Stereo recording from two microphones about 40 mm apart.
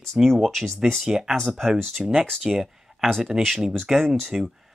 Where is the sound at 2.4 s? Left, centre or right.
Centre.